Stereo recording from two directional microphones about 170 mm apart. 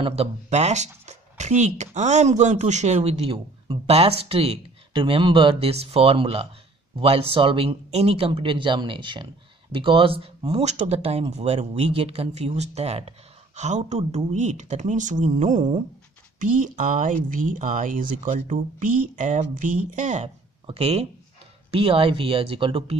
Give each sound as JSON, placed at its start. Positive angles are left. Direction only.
{"t": 0.0, "sound": "speech", "side_deg": -35}